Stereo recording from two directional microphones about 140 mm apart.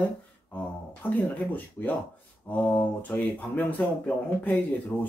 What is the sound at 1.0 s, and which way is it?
Speech, 10° left (ahead or behind).